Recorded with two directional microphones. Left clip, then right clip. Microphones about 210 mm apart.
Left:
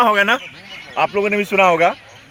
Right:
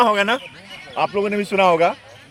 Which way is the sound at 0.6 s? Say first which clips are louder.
Left 3 dB; 50° right (ahead or behind).